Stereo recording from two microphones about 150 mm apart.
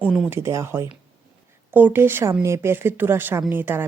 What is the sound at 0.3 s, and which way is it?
Speech, 15° right (ahead or behind).